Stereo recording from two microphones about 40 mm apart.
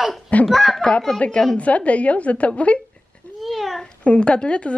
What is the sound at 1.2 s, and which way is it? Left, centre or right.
A woman's voice, left.